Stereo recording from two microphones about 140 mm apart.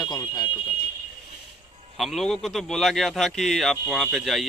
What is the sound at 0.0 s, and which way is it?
Alarm, 30° left (ahead or behind).